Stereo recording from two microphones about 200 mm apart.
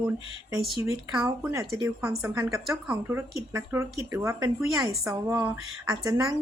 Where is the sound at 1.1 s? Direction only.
15° right (ahead or behind).